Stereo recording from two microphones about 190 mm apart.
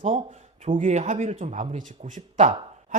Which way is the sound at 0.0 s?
35° right (ahead or behind).